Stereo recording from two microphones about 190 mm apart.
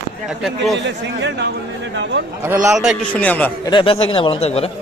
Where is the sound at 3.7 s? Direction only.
30° left (ahead or behind).